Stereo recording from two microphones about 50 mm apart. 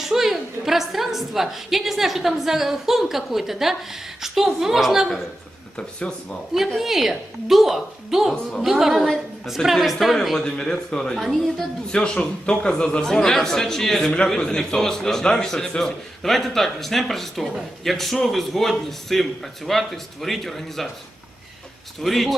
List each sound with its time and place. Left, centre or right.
0.0 s a man's voice: centre
5.7 s speech: left
6.7 s a man's voice: centre
10.5 s a man's voice: centre
11.2 s a man's voice: centre
11.9 s a man's voice: centre
22.0 s a man's voice: centre